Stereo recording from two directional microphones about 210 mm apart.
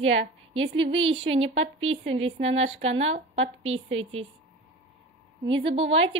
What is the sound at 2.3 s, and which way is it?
A woman's voice, 30° right (ahead or behind).